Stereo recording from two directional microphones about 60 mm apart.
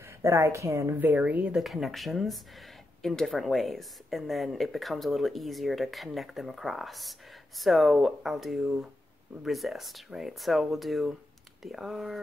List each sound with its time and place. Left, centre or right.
0.0 s a woman's voice: right
0.9 s a woman's voice: right
1.6 s speech: centre